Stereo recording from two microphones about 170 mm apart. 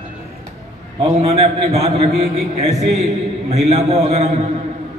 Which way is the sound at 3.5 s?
40° right (ahead or behind).